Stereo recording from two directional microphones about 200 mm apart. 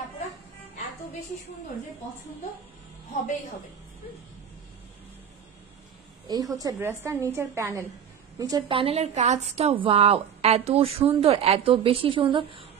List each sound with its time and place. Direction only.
6.2 s a woman's voice: 20° right (ahead or behind)